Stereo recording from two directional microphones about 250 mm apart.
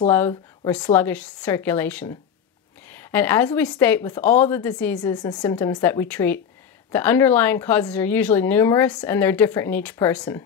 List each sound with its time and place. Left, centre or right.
0.1 s a woman's voice: centre
5.0 s speech: centre